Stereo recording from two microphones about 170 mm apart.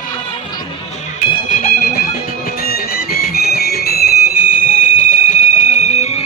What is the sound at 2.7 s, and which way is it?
Music, 65° left (ahead or behind).